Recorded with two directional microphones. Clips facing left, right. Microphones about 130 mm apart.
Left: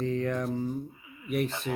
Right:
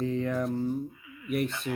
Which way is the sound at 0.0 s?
Centre (ahead or behind).